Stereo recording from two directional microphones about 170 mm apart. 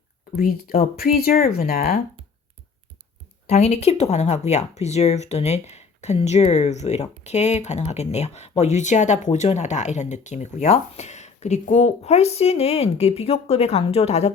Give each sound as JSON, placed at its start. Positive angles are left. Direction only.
{"t": 0.3, "sound": "speech", "side_deg": 60}
{"t": 3.4, "sound": "speech", "side_deg": 40}